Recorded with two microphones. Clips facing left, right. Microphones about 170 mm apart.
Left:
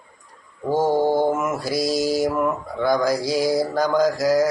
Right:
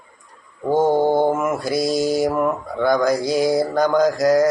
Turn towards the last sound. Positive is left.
turn(degrees=0)  # may be behind; listen again after turning